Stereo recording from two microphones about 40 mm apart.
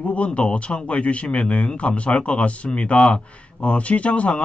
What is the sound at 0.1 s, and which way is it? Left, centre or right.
Speech, left.